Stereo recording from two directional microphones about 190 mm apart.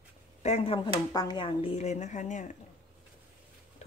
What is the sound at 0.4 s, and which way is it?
A woman's voice, 35° left (ahead or behind).